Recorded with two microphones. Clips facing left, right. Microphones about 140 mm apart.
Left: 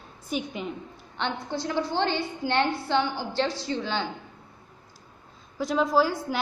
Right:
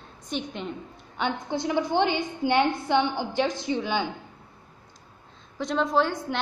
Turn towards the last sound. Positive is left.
turn(degrees=5)  # may be behind; listen again after turning